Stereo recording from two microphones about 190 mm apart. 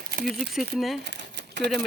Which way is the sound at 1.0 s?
65° right (ahead or behind).